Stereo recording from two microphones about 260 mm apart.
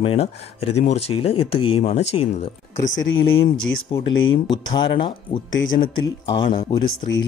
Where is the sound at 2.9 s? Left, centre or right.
Left.